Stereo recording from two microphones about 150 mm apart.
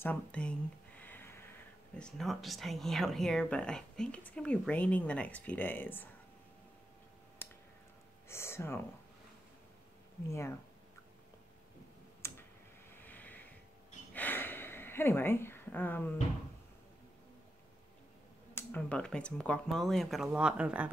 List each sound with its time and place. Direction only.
0.0 s a sound: 10° left (ahead or behind)
2.0 s speech: 5° left (ahead or behind)
8.3 s speech: 15° left (ahead or behind)
10.3 s speech: 20° left (ahead or behind)
12.2 s clicking: 15° left (ahead or behind)
12.9 s vehicle: 10° left (ahead or behind)
14.1 s a sound: 10° left (ahead or behind)
18.5 s speech: 15° left (ahead or behind); by 20.9 s 10° right (ahead or behind)